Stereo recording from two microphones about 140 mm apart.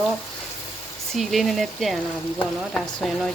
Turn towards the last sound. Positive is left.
turn(degrees=5)  # may be behind; listen again after turning